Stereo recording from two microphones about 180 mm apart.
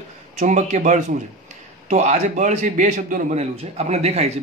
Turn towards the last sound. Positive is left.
turn(degrees=-35)  # may be behind; listen again after turning